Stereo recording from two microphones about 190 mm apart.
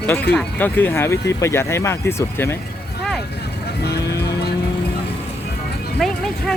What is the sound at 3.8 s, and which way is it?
Music, 60° left (ahead or behind).